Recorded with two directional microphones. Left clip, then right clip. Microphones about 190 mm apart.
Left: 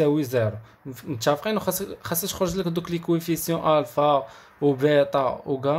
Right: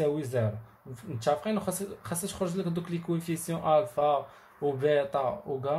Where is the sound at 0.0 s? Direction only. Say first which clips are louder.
Left 7 dB; 30° left (ahead or behind).